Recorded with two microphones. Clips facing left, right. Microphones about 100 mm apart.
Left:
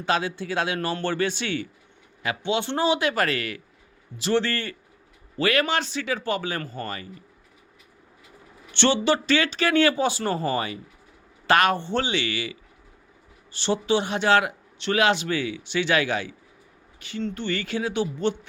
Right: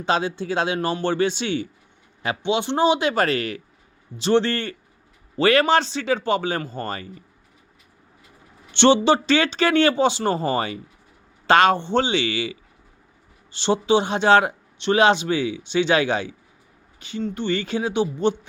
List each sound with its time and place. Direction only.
0.0 s speech: 25° right (ahead or behind)
8.7 s speech: 20° right (ahead or behind)
13.5 s speech: 25° right (ahead or behind)